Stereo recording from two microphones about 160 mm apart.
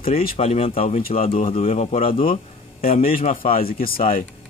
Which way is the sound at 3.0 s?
60° left (ahead or behind).